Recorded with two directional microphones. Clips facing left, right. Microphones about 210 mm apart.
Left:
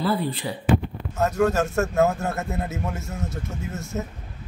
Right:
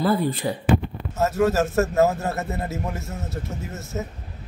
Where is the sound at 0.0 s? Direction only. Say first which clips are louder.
Right 3 dB; 45° right (ahead or behind).